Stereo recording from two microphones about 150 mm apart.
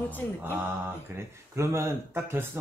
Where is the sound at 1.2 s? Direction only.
15° right (ahead or behind).